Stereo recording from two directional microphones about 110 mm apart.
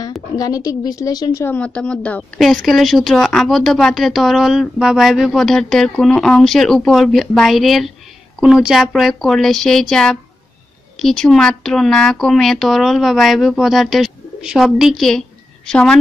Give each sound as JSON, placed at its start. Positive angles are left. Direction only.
{"t": 0.4, "sound": "a woman's voice", "side_deg": 35}
{"t": 1.4, "sound": "a woman's voice", "side_deg": 15}